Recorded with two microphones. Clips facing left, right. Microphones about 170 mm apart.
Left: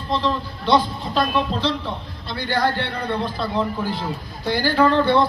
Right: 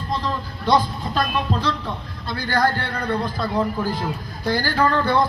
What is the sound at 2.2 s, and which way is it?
Speech, 45° right (ahead or behind).